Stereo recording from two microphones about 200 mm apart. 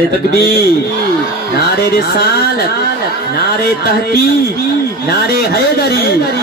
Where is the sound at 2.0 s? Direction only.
50° left (ahead or behind).